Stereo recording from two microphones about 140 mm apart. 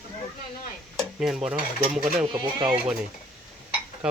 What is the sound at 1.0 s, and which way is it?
Stir, 5° right (ahead or behind).